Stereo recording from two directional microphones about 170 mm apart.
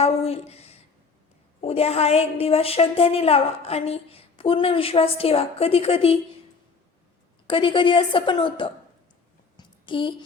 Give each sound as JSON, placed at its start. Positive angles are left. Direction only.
{"t": 0.0, "sound": "a woman's voice", "side_deg": 35}
{"t": 7.5, "sound": "a woman's voice", "side_deg": 30}
{"t": 9.6, "sound": "a sound", "side_deg": 30}